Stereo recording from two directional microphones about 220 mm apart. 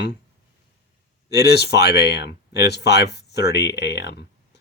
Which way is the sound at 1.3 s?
45° left (ahead or behind).